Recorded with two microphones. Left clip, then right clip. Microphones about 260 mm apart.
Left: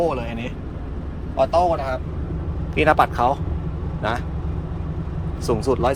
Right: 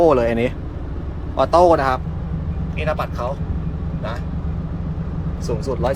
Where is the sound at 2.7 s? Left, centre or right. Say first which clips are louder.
Left 7 dB; centre.